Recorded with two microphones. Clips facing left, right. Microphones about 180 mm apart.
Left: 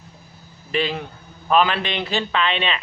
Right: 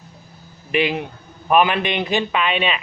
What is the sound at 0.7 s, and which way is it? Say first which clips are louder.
Speech: right 3 dB; 15° right (ahead or behind).